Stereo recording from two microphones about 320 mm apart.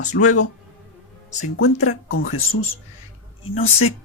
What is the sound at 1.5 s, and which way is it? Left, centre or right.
Speech, left.